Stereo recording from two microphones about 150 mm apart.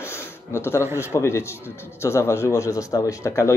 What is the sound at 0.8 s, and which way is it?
Speech, 15° right (ahead or behind).